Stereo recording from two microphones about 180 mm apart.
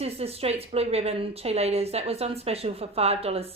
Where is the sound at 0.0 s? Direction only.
35° right (ahead or behind).